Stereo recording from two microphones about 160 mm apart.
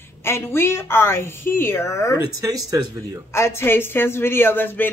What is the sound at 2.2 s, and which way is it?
Speech, 20° right (ahead or behind).